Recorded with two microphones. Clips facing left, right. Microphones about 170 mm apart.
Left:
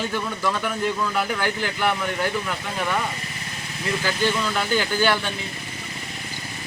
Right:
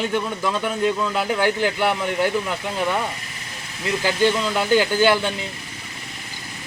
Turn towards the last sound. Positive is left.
turn(degrees=-15)  # may be behind; listen again after turning